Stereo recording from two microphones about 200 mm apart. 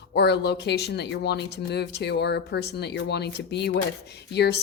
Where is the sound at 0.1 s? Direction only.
55° left (ahead or behind).